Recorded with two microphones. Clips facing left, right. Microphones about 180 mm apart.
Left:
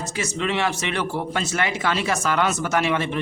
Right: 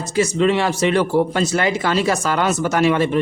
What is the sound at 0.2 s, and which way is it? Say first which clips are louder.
Speech: right 8 dB; 35° right (ahead or behind).